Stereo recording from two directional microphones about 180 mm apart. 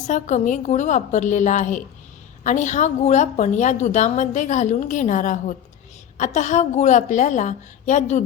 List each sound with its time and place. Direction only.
0.1 s a woman's voice: 40° left (ahead or behind)